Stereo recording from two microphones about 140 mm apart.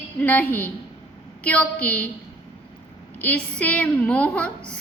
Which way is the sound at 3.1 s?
10° left (ahead or behind).